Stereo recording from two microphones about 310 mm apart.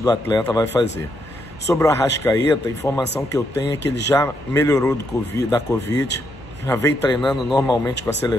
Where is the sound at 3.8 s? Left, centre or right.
Left.